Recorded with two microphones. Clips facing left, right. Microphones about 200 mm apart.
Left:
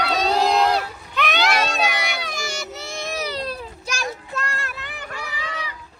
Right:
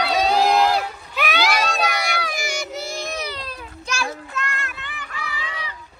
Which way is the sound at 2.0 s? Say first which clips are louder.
Right 3 dB; centre (ahead or behind).